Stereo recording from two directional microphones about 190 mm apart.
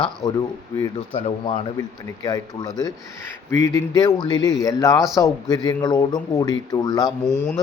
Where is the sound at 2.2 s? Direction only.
20° left (ahead or behind).